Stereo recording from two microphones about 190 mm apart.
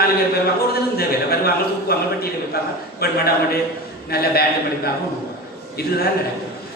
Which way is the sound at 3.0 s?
55° left (ahead or behind).